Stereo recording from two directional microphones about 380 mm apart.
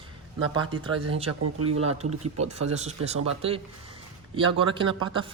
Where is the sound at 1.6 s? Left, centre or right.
Centre.